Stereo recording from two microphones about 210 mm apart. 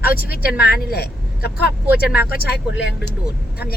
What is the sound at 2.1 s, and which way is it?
Speech, 45° left (ahead or behind).